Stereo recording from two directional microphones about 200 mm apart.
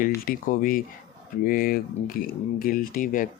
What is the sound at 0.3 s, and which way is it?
Speech, 45° left (ahead or behind).